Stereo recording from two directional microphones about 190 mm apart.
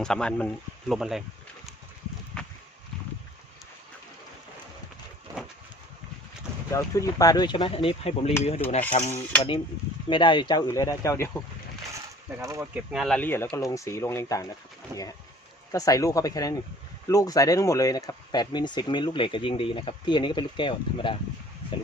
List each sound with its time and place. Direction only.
0.0 s speech: 5° left (ahead or behind)
2.3 s a sound: 5° left (ahead or behind)
6.7 s speech: 15° left (ahead or behind); by 8.3 s 30° left (ahead or behind)
8.9 s cutlery: 35° left (ahead or behind)
9.1 s speech: 15° left (ahead or behind)
10.1 s speech: 25° left (ahead or behind)
12.4 s speech: 15° right (ahead or behind)
12.9 s speech: centre (ahead or behind); by 14.4 s 15° left (ahead or behind)
14.9 s speech: 10° right (ahead or behind)
15.7 s speech: 20° left (ahead or behind)